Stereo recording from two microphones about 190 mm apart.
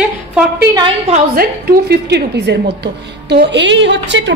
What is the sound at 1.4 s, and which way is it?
A woman's voice, 55° right (ahead or behind).